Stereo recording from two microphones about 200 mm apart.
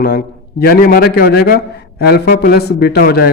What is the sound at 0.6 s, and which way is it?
A man's voice, 45° left (ahead or behind).